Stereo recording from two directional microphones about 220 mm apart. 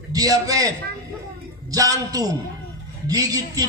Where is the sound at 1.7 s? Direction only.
15° right (ahead or behind).